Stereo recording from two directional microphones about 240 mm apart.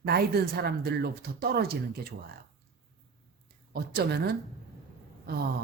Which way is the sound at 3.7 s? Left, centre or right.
Right.